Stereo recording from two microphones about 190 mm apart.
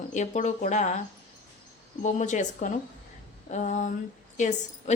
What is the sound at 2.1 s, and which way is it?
A woman's voice, 40° left (ahead or behind).